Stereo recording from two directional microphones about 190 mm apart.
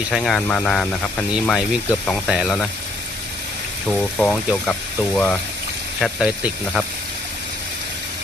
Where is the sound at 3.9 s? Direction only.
5° left (ahead or behind).